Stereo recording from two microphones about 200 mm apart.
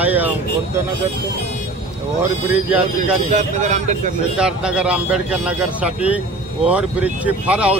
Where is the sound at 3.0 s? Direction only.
35° right (ahead or behind).